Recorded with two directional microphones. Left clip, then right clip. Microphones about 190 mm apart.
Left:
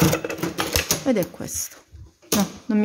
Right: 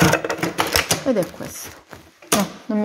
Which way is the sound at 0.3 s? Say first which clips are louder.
Right 5 dB; 10° left (ahead or behind).